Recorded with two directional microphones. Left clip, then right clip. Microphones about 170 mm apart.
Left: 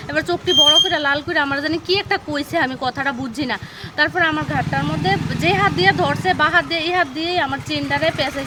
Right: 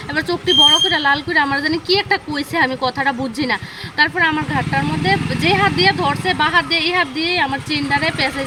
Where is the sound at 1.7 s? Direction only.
40° left (ahead or behind).